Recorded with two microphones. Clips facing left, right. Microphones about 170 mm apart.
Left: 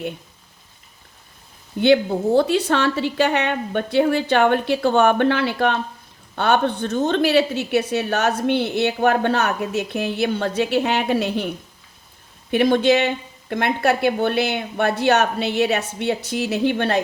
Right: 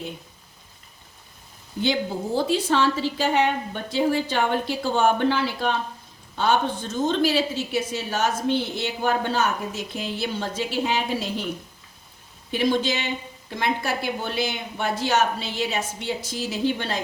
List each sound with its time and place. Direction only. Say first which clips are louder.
1.8 s a woman's voice: left 8 dB; 65° left (ahead or behind)
12.5 s a woman's voice: left 7 dB; 60° left (ahead or behind)